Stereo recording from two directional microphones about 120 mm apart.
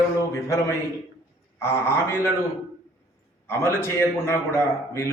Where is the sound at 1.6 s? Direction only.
20° left (ahead or behind).